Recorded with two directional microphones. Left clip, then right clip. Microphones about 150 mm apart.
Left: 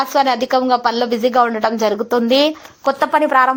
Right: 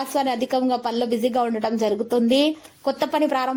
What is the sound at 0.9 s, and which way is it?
Speech, 30° left (ahead or behind).